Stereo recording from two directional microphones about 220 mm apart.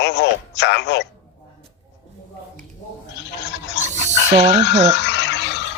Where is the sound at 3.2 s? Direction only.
50° left (ahead or behind).